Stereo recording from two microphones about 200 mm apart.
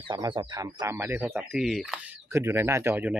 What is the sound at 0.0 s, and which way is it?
Speech, 25° right (ahead or behind).